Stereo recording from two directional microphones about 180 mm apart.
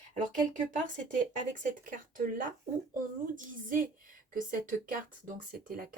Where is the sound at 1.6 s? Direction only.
45° right (ahead or behind).